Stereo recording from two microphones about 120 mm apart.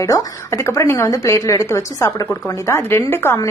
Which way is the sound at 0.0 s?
25° left (ahead or behind).